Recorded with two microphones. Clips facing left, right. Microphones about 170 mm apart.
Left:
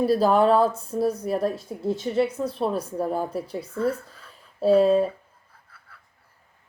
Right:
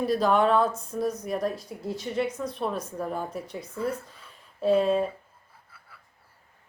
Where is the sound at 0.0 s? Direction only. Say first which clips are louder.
Left 4 dB; 35° left (ahead or behind).